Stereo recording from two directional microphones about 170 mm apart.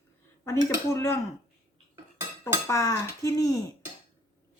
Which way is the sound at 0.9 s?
15° left (ahead or behind).